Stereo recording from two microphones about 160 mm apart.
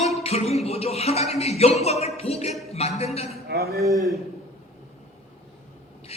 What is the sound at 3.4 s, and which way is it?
Speech, 75° right (ahead or behind).